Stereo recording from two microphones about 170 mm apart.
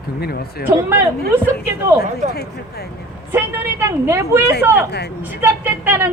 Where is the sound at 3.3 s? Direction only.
15° right (ahead or behind).